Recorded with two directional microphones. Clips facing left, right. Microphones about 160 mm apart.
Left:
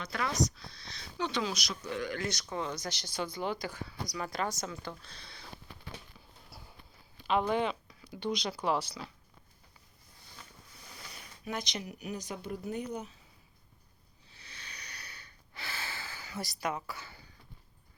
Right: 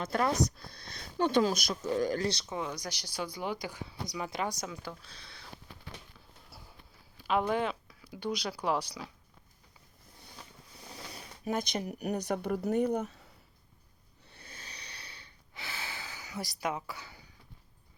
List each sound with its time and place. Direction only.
0.0 s speech: 45° right (ahead or behind)
2.5 s speech: 10° right (ahead or behind)
7.2 s speech: 5° right (ahead or behind)
11.4 s speech: 45° right (ahead or behind)
14.3 s owl: 50° right (ahead or behind)
14.7 s snort: 30° right (ahead or behind)
15.6 s gasp: 15° right (ahead or behind)